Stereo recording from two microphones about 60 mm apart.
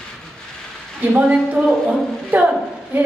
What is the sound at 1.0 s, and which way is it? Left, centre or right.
A woman's voice, right.